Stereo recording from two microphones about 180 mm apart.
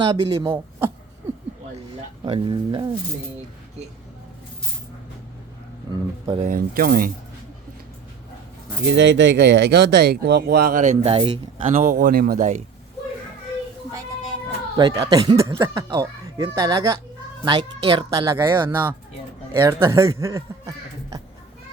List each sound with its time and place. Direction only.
0.1 s speech: 30° right (ahead or behind)
0.4 s speech: 15° right (ahead or behind)
2.2 s speech: 25° right (ahead or behind)
5.9 s speech: 25° right (ahead or behind)
6.4 s speech: 50° right (ahead or behind)
8.9 s speech: 80° right; by 11.6 s 30° right (ahead or behind)
11.6 s speech: 40° right (ahead or behind)
14.8 s speech: 20° right (ahead or behind)
19.5 s speech: 15° right (ahead or behind)